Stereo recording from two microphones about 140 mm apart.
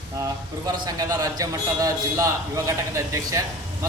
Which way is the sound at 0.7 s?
25° right (ahead or behind).